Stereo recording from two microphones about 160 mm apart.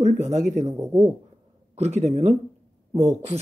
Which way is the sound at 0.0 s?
45° right (ahead or behind).